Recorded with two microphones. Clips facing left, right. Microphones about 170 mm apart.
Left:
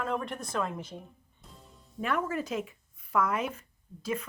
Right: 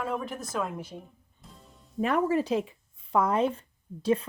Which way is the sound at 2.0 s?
30° right (ahead or behind).